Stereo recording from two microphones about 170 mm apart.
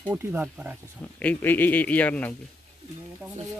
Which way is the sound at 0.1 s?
10° right (ahead or behind).